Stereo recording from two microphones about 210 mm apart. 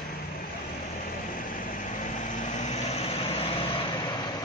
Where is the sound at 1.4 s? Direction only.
40° left (ahead or behind); by 4.3 s 20° left (ahead or behind).